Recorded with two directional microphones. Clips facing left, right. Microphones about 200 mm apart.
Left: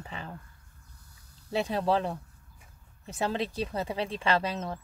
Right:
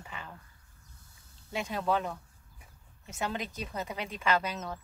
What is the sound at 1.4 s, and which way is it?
A woman's voice, 35° left (ahead or behind).